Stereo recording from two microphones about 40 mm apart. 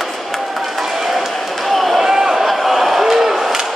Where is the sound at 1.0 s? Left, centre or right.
Centre.